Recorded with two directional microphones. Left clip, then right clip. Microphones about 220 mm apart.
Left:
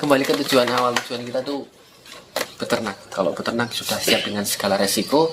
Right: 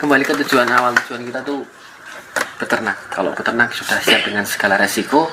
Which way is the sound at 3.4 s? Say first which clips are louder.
Right 8 dB; 50° left (ahead or behind).